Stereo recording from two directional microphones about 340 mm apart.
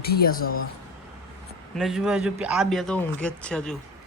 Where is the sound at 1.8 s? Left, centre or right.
Centre.